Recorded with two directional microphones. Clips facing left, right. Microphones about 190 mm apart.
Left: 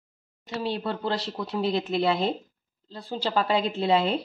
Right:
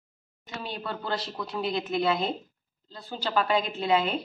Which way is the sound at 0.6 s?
30° left (ahead or behind).